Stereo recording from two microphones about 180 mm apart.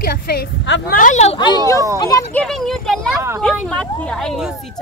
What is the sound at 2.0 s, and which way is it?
Speech, 20° left (ahead or behind).